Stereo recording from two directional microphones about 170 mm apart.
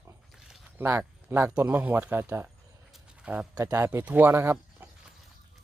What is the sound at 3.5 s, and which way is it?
Speech, 15° right (ahead or behind).